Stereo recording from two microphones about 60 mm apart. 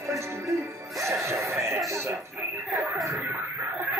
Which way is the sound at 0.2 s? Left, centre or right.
Right.